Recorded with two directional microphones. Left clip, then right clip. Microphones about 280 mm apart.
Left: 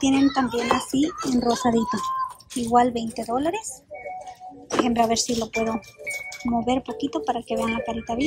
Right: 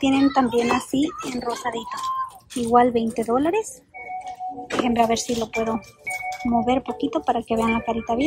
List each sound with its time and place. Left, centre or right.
0.0 s speech: centre
1.4 s speech: centre
2.7 s speech: centre
4.7 s speech: centre